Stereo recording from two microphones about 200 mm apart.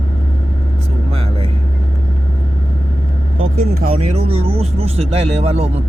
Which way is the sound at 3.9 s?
30° right (ahead or behind).